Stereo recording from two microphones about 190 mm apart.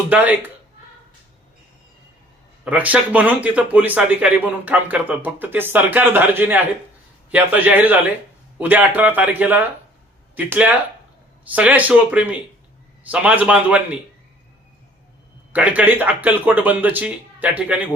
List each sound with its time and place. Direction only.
0.1 s speech: 10° right (ahead or behind)
2.6 s speech: 10° right (ahead or behind)
15.5 s speech: 10° right (ahead or behind)